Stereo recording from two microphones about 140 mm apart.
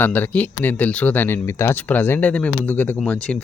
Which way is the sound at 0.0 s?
15° left (ahead or behind).